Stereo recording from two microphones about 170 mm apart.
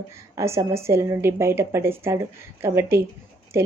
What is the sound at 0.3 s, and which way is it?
Speech, 15° right (ahead or behind).